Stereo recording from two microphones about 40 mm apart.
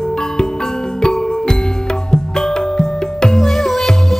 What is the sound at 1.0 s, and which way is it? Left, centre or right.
Music, centre.